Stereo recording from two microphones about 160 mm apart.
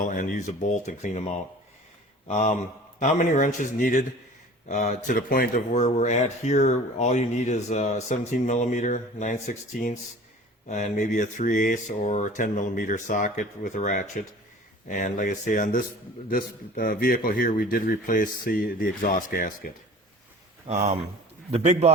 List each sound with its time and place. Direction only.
0.0 s a man's voice: 55° left (ahead or behind)
20.7 s a man's voice: 45° right (ahead or behind)